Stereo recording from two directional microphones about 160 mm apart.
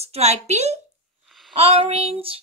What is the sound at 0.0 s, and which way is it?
Speech, 40° right (ahead or behind).